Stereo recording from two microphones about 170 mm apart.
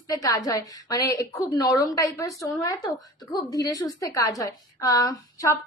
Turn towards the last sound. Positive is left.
turn(degrees=20)  # may be behind; listen again after turning